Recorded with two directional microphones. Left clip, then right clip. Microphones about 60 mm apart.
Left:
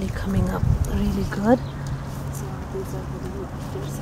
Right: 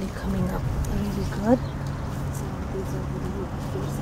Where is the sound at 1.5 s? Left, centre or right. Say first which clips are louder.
Left 3 dB; left.